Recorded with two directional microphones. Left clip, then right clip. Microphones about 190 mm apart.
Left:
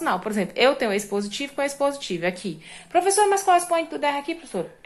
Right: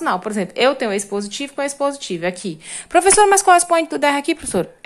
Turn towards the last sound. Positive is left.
turn(degrees=-45)  # may be behind; listen again after turning